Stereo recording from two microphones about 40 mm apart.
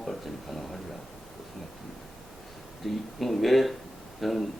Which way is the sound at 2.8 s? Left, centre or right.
Centre.